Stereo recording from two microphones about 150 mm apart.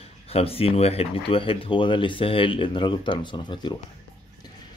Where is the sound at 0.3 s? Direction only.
40° left (ahead or behind).